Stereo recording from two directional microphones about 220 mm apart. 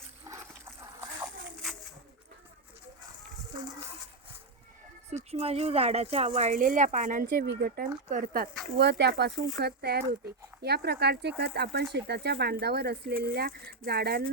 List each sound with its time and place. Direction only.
0.3 s splash: 15° right (ahead or behind)
5.1 s speech: 30° right (ahead or behind); by 14.3 s 45° right (ahead or behind)